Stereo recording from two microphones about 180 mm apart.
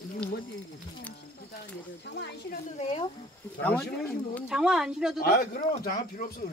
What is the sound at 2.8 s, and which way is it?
Speech, 35° left (ahead or behind).